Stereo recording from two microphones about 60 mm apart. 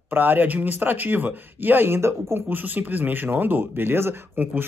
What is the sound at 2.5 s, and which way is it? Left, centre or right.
A man's voice, right.